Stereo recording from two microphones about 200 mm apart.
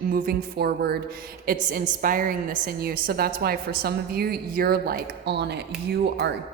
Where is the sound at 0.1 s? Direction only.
50° right (ahead or behind).